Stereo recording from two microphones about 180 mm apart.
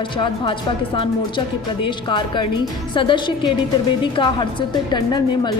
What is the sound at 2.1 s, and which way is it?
Speech, 25° left (ahead or behind).